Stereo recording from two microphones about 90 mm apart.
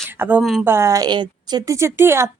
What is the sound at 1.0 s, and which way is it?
Speech, 55° right (ahead or behind).